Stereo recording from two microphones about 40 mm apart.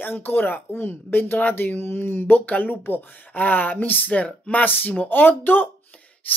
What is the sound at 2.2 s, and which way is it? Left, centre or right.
Speech, left.